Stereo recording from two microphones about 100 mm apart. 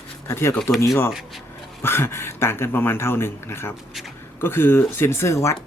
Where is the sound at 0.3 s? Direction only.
25° left (ahead or behind).